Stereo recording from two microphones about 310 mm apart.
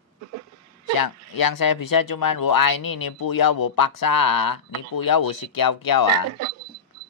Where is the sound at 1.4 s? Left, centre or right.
Left.